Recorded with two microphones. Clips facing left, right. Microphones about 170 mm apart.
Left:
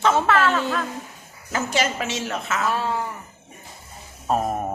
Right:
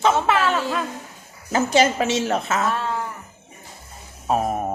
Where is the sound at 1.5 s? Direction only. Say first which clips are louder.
Right 6 dB; 30° right (ahead or behind).